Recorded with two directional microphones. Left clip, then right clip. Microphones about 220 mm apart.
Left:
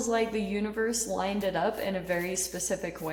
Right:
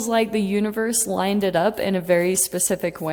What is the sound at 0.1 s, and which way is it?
A woman's voice, 50° right (ahead or behind).